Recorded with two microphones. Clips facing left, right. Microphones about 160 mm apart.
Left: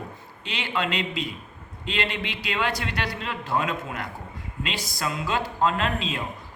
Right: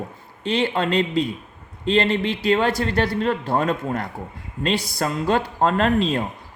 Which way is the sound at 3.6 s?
35° right (ahead or behind).